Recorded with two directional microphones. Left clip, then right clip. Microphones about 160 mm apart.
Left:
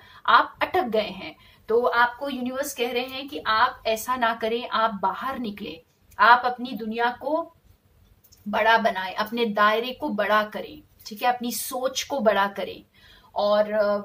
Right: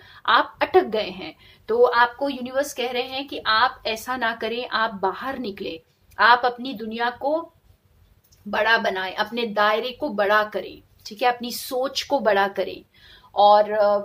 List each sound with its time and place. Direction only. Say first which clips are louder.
0.0 s a woman's voice: even; 40° right (ahead or behind)
1.7 s a woman's voice: right 3 dB; 45° right (ahead or behind)
8.5 s a woman's voice: even; 35° right (ahead or behind)